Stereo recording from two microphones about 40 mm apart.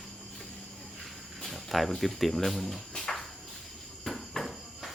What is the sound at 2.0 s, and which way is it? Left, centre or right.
Speech, centre.